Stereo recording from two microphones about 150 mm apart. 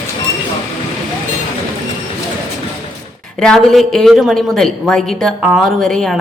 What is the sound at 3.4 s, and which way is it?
Speech, 5° left (ahead or behind).